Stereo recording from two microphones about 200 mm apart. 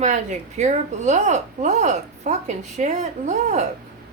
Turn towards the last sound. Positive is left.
turn(degrees=-35)  # may be behind; listen again after turning